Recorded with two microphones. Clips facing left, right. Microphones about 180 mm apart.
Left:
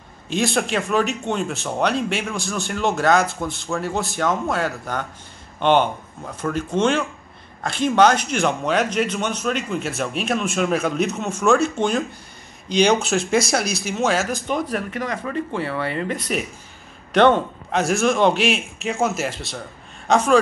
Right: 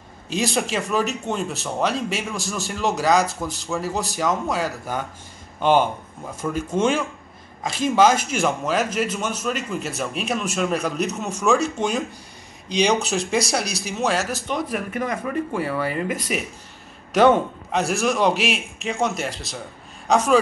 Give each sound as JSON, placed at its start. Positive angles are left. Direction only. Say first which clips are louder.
{"t": 0.3, "sound": "speech", "louder": "left 2 dB", "side_deg": 0}
{"t": 12.6, "sound": "speech", "louder": "left 3 dB", "side_deg": 0}
{"t": 15.0, "sound": "speech", "louder": "right 1 dB", "side_deg": -15}